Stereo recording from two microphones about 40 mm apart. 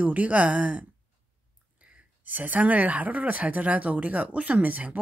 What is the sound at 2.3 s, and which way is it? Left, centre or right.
Speech, right.